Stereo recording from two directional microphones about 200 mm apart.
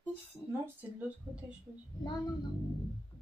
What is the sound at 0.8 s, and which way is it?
Speech, 10° right (ahead or behind).